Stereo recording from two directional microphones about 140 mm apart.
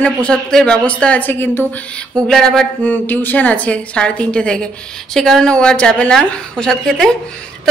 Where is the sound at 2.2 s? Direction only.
5° left (ahead or behind).